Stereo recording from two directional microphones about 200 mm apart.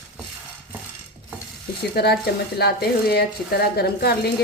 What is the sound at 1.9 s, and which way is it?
A woman's voice, 55° left (ahead or behind).